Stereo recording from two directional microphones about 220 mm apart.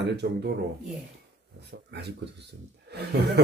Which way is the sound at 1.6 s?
50° right (ahead or behind).